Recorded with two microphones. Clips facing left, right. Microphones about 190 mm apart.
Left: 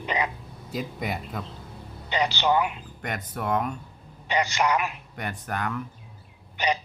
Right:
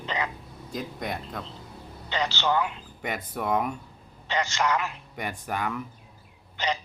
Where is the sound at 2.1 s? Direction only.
15° left (ahead or behind).